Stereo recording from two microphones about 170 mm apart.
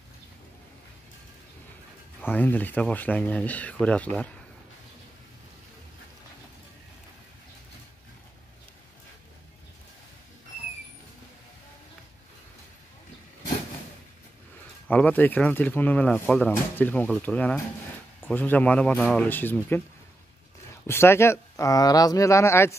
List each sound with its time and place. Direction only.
2.2 s speech: 10° left (ahead or behind)
14.9 s speech: 10° left (ahead or behind)
20.8 s speech: 15° left (ahead or behind)